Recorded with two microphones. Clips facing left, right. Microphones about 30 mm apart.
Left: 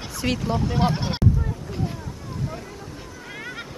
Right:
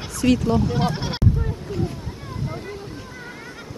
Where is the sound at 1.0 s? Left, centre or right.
Centre.